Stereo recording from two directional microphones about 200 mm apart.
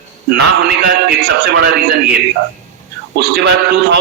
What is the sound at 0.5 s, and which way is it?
A man's voice, 55° right (ahead or behind).